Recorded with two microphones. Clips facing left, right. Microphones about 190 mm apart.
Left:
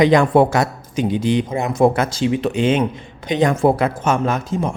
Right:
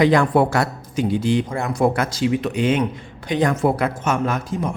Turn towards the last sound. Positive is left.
turn(degrees=25)  # may be behind; listen again after turning